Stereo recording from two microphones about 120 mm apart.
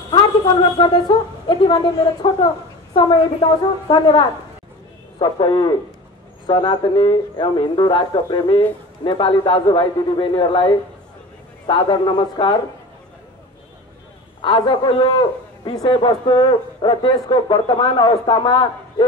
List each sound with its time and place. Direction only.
0.1 s a woman's voice: 35° left (ahead or behind)
14.4 s a man's voice: 40° left (ahead or behind)